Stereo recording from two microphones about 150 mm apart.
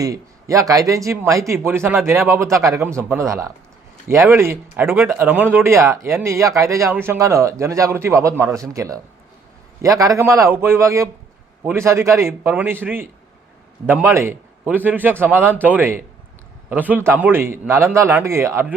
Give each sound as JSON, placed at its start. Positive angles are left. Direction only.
{"t": 0.0, "sound": "a man's voice", "side_deg": -20}